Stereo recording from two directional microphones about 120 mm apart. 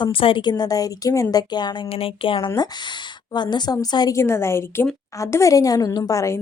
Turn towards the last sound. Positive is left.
turn(degrees=25)  # may be behind; listen again after turning